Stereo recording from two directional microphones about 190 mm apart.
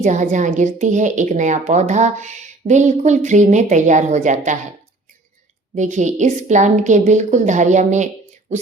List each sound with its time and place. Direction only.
0.0 s speech: 40° right (ahead or behind)
5.7 s speech: 40° right (ahead or behind)